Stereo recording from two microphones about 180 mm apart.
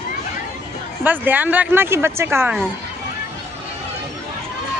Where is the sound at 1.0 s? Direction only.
10° right (ahead or behind).